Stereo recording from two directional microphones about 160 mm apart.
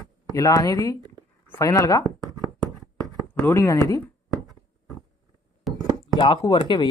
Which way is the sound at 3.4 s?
20° left (ahead or behind).